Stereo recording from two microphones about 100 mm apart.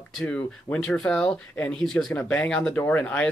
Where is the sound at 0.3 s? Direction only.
10° left (ahead or behind).